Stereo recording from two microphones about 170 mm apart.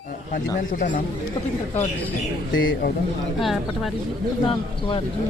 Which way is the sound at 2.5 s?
90° left.